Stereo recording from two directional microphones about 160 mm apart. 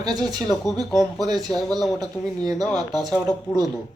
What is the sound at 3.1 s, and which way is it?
Speech, centre (ahead or behind).